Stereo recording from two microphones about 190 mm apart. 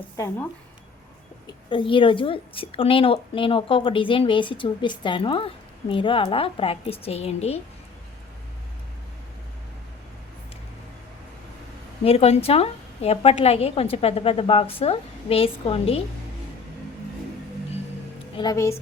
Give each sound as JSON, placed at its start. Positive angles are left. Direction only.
{"t": 1.7, "sound": "a woman's voice", "side_deg": 25}
{"t": 12.0, "sound": "a woman's voice", "side_deg": 30}
{"t": 18.3, "sound": "speech", "side_deg": 20}